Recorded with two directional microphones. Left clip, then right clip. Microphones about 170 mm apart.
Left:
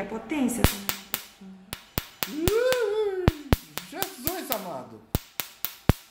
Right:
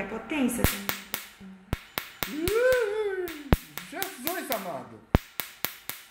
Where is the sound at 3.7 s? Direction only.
Centre (ahead or behind).